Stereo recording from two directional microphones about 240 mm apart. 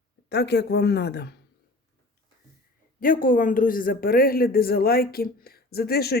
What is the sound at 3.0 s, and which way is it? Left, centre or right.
Speech, left.